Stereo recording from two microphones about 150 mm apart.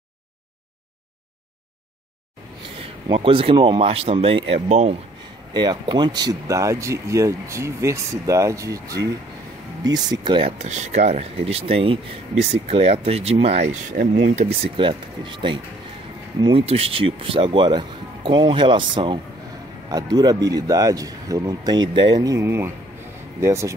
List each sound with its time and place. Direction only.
2.8 s speech: 35° right (ahead or behind)
5.5 s speech: 30° right (ahead or behind)
10.6 s speech: 50° right (ahead or behind)
14.8 s speech: 35° right (ahead or behind)
16.6 s speech: 40° right (ahead or behind); by 23.7 s 20° right (ahead or behind)